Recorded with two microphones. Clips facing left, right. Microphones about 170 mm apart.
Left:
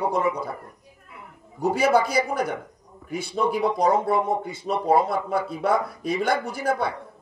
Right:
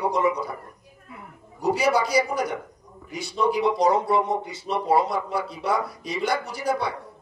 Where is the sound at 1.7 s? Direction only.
50° left (ahead or behind).